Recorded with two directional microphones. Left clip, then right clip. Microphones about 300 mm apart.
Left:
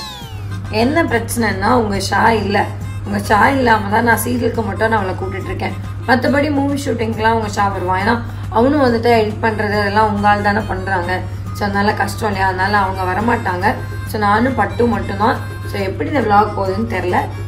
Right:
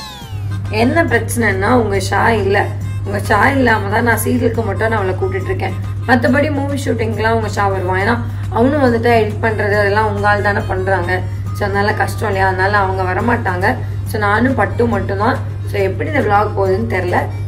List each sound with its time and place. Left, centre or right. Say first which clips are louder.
0.7 s a woman's voice: right 1 dB; centre